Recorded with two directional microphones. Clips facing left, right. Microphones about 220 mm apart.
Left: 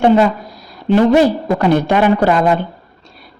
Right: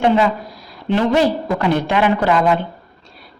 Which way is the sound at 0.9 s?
45° left (ahead or behind).